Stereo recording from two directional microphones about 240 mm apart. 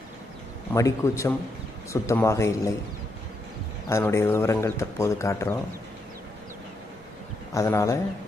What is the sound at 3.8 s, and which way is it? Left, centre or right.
A man's voice, centre.